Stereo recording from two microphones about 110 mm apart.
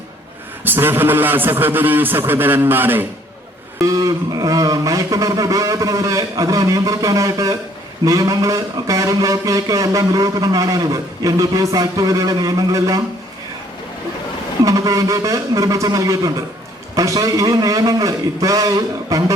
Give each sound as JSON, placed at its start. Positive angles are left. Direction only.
{"t": 0.6, "sound": "a man's voice", "side_deg": -20}
{"t": 3.8, "sound": "a man's voice", "side_deg": -30}
{"t": 14.6, "sound": "a man's voice", "side_deg": -30}